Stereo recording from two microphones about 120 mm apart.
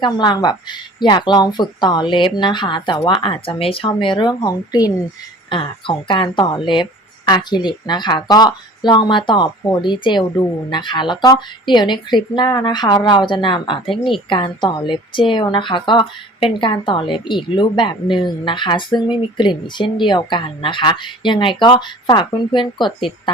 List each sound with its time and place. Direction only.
0.0 s a woman's voice: 35° left (ahead or behind)